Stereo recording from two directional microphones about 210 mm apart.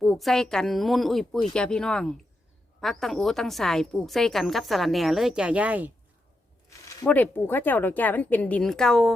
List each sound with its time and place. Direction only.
0.0 s a woman's voice: centre (ahead or behind)
6.8 s speech: 10° left (ahead or behind)